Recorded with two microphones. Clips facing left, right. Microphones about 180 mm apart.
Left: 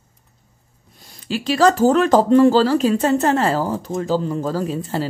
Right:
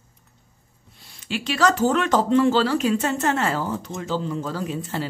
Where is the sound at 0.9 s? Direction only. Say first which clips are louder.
Left 4 dB; 40° left (ahead or behind).